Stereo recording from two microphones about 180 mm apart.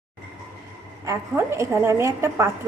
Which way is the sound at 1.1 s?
15° right (ahead or behind).